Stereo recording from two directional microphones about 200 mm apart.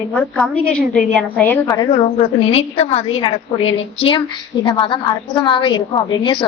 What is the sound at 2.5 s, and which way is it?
A woman's voice, 30° left (ahead or behind).